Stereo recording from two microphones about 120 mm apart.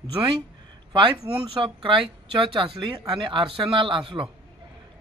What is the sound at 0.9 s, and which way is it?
A man's voice, 45° right (ahead or behind).